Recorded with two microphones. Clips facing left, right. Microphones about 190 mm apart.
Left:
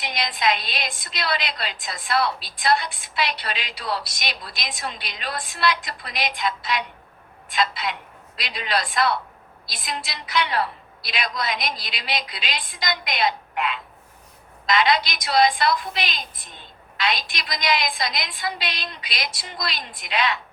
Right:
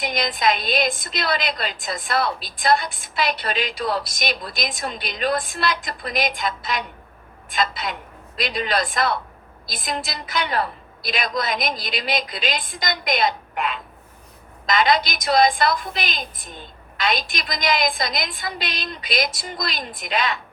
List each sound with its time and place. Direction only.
0.0 s a woman's voice: 45° right (ahead or behind)